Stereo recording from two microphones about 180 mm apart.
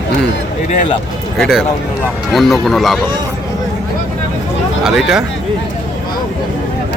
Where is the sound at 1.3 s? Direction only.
Centre (ahead or behind).